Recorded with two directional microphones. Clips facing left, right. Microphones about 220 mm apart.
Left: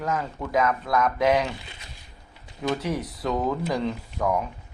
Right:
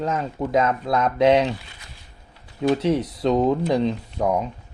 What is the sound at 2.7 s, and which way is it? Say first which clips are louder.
Speech: right 7 dB; 25° right (ahead or behind).